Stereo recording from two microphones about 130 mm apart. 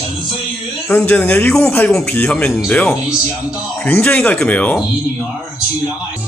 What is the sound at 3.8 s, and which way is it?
Speech, 10° left (ahead or behind).